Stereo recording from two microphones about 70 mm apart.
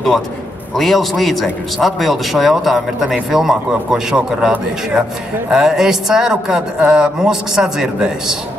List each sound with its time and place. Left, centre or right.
0.7 s a man's voice: centre
5.5 s speech: centre